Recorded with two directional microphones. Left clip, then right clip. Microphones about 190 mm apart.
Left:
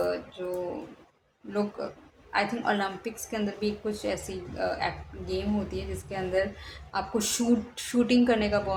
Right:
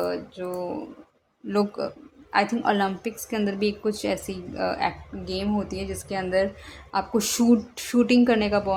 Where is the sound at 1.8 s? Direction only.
45° right (ahead or behind).